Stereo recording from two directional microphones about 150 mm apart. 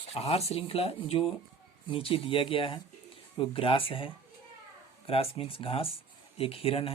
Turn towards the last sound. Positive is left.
turn(degrees=40)  # may be behind; listen again after turning